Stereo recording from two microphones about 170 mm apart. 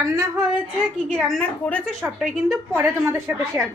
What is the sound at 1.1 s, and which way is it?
Speech, 5° left (ahead or behind).